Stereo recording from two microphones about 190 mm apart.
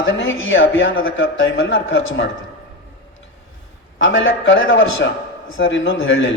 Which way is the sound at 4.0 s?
85° left.